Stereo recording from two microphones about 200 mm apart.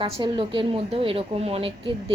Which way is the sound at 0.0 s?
25° right (ahead or behind).